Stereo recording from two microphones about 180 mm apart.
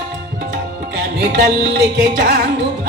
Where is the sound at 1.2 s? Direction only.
60° right (ahead or behind).